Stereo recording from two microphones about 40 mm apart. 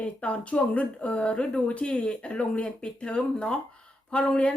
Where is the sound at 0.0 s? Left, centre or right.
Left.